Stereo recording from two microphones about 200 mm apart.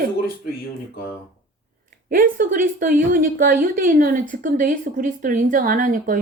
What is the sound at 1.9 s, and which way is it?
Speech, 45° right (ahead or behind).